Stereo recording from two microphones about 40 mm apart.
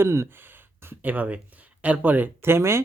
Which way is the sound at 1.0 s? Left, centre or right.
Right.